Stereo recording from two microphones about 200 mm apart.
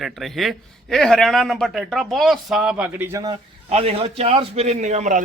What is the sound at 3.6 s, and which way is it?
A man's voice, 30° right (ahead or behind).